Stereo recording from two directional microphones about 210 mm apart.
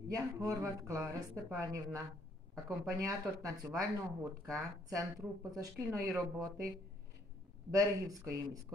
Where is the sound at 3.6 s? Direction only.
10° right (ahead or behind).